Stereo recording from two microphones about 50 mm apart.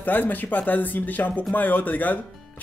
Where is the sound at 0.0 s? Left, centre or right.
Left.